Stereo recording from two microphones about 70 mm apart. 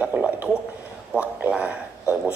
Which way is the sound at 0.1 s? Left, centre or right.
Right.